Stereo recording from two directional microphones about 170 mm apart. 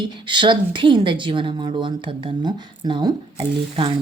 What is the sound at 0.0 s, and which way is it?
A woman's voice, 25° right (ahead or behind).